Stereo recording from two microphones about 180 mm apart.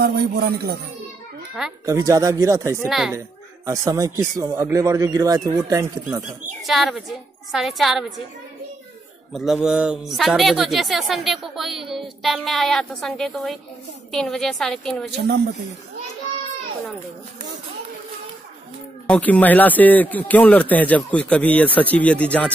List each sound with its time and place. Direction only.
0.0 s speech: 60° right (ahead or behind)
1.9 s speech: 20° right (ahead or behind)
2.9 s speech: centre (ahead or behind)
3.2 s speech: 20° right (ahead or behind)
6.6 s speech: centre (ahead or behind)
9.3 s speech: 5° right (ahead or behind)
15.0 s speech: 65° right (ahead or behind)
19.0 s speech: 10° left (ahead or behind)